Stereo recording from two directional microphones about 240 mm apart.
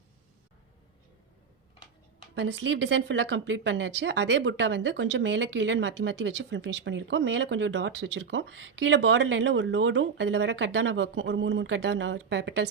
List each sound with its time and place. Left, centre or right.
2.3 s speech: right